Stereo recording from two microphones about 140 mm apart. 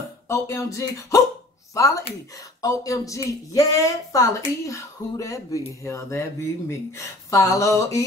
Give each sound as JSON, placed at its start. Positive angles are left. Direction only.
{"t": 0.3, "sound": "speech", "side_deg": 20}